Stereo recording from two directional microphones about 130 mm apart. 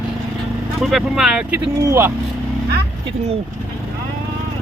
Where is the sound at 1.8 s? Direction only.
20° right (ahead or behind).